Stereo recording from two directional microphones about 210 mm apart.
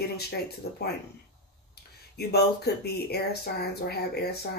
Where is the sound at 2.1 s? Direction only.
50° left (ahead or behind).